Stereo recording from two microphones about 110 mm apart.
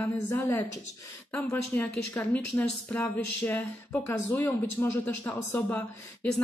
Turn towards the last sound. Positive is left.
turn(degrees=15)  # may be behind; listen again after turning